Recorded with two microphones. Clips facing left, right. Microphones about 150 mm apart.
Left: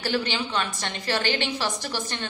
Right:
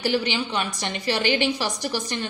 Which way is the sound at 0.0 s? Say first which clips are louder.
Right 3 dB; 15° right (ahead or behind).